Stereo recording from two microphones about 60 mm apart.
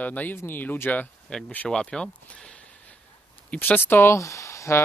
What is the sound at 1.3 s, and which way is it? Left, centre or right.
Speech, centre.